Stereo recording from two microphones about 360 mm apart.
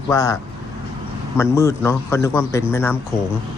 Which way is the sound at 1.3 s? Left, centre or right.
Centre.